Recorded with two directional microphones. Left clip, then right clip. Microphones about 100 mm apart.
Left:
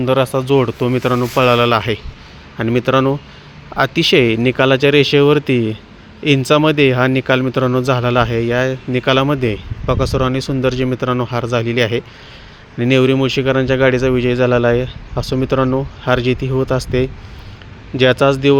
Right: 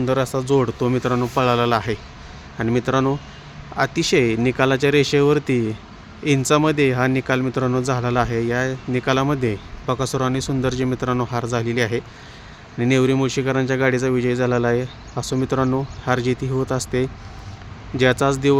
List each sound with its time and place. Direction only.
0.0 s speech: 20° left (ahead or behind)